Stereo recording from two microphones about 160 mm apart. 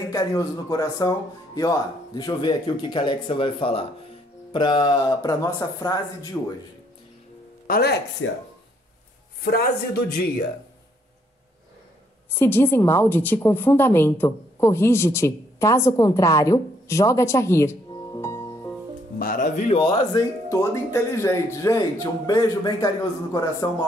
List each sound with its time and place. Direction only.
0.1 s speech: 25° left (ahead or behind)
7.6 s speech: 80° left
9.4 s speech: 70° left (ahead or behind)
12.4 s a woman's voice: 15° left (ahead or behind)
19.1 s speech: 60° left (ahead or behind)
19.8 s speech: 25° left (ahead or behind)